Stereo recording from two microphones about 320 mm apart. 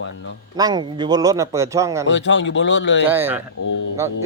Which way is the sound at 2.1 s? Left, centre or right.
Left.